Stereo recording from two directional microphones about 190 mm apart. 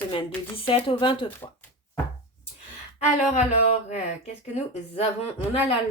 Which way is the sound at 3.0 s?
40° left (ahead or behind).